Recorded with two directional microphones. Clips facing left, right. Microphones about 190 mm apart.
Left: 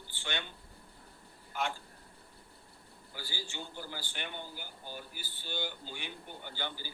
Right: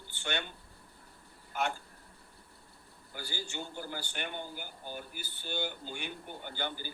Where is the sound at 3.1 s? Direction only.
50° right (ahead or behind).